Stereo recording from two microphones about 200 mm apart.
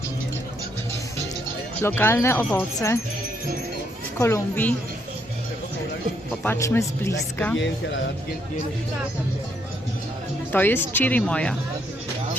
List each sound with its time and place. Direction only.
1.8 s speech: 10° left (ahead or behind)
4.2 s speech: 15° left (ahead or behind)
6.4 s speech: 10° left (ahead or behind)
7.5 s speech: 65° left (ahead or behind)
10.5 s speech: 10° left (ahead or behind)